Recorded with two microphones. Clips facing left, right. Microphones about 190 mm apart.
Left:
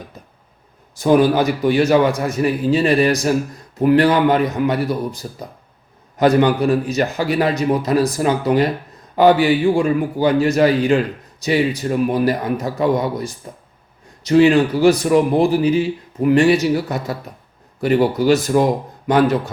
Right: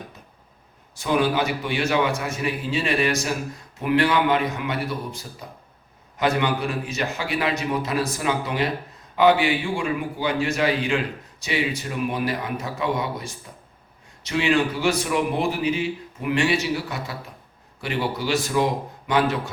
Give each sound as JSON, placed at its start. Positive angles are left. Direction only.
{"t": 0.9, "sound": "a man's voice", "side_deg": 40}